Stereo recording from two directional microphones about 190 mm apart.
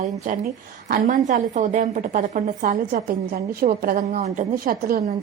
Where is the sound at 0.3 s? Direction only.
40° right (ahead or behind).